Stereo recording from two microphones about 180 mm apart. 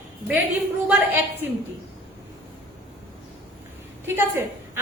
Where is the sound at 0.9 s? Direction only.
10° right (ahead or behind).